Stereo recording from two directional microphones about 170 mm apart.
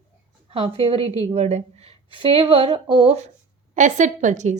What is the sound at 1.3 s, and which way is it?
Speech, 40° right (ahead or behind).